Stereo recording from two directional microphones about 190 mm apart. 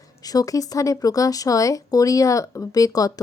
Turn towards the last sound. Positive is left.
turn(degrees=20)  # may be behind; listen again after turning